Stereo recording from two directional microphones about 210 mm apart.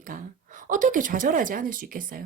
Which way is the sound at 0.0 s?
40° right (ahead or behind).